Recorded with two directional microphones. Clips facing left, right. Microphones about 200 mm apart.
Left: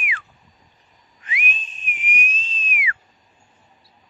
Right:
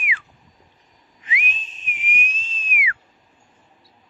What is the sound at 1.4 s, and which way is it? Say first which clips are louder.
Whistling: left 2 dB; 90° right.